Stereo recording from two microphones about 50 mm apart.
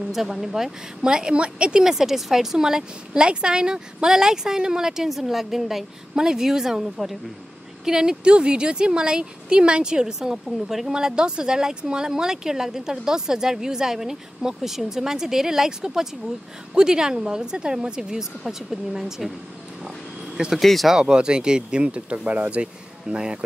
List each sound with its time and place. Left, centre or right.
0.1 s speech: centre
20.5 s speech: centre
20.9 s speech: centre